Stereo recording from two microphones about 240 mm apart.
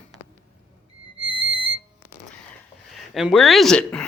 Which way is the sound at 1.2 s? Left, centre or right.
Right.